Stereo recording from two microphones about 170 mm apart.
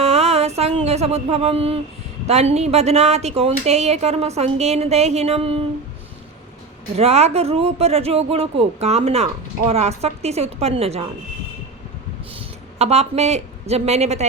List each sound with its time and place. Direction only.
0.0 s music: 40° right (ahead or behind)
2.2 s speech: 40° right (ahead or behind)
6.9 s speech: 40° right (ahead or behind)
12.3 s speech: 35° right (ahead or behind)